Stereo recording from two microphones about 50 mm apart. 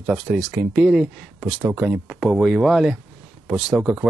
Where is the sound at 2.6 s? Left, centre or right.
Centre.